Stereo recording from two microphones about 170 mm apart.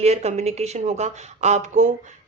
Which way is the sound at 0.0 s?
40° right (ahead or behind).